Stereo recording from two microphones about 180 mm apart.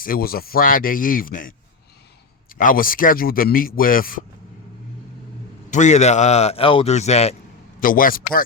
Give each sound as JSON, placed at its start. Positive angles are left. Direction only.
{"t": 0.0, "sound": "a man's voice", "side_deg": 55}
{"t": 5.7, "sound": "speech", "side_deg": 40}
{"t": 7.8, "sound": "a man's voice", "side_deg": 50}